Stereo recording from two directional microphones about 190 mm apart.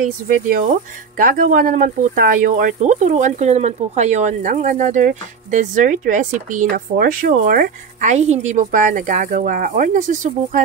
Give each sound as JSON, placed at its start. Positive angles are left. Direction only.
{"t": 0.0, "sound": "speech", "side_deg": -45}